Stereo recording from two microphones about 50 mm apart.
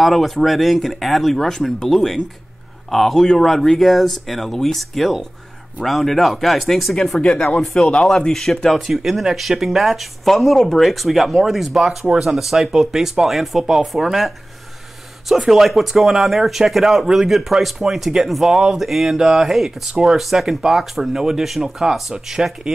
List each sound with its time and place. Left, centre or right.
0.0 s speech: centre
7.2 s speech: centre
7.6 s speech: centre
12.0 s speech: centre